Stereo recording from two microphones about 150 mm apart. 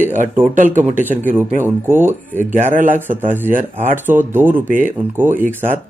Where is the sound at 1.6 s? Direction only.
15° right (ahead or behind).